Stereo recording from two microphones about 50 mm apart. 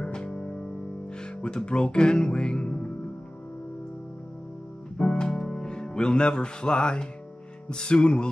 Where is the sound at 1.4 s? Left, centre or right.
Centre.